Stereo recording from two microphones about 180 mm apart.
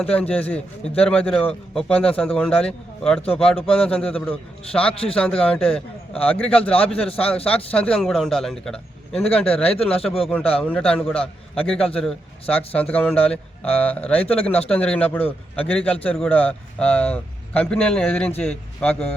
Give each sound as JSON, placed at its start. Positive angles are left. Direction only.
{"t": 0.0, "sound": "a man's voice", "side_deg": 5}
{"t": 7.0, "sound": "a man's voice", "side_deg": 30}
{"t": 7.4, "sound": "a man's voice", "side_deg": 5}